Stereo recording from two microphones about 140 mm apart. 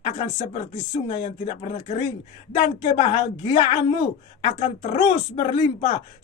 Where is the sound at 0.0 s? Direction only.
50° left (ahead or behind).